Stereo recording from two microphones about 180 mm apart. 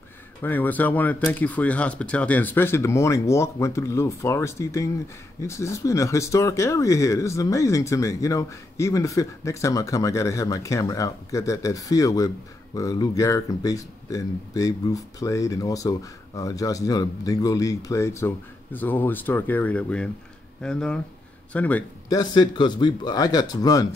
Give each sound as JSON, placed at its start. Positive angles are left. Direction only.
{"t": 0.4, "sound": "speech", "side_deg": 10}
{"t": 22.1, "sound": "speech", "side_deg": 20}